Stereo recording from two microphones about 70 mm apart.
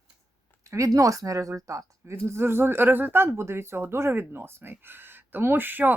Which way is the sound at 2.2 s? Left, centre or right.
Right.